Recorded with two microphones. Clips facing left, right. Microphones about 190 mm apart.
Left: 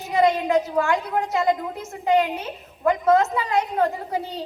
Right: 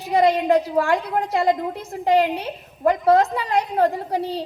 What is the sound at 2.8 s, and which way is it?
A woman's voice, 35° right (ahead or behind).